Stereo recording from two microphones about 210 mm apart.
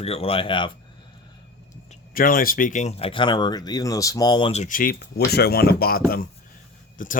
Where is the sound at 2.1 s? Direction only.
45° left (ahead or behind).